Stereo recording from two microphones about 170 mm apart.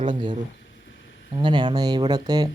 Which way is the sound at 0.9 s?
90° left.